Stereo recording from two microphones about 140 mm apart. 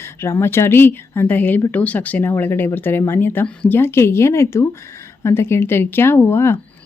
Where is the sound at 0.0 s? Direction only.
15° left (ahead or behind).